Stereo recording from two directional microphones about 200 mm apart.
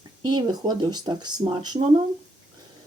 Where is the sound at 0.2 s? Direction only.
20° right (ahead or behind).